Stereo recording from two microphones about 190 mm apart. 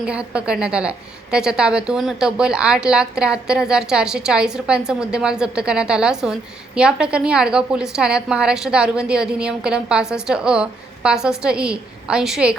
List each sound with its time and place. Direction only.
0.0 s a woman's voice: 5° right (ahead or behind)